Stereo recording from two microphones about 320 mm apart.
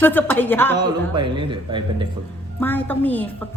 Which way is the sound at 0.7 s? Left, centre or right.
Centre.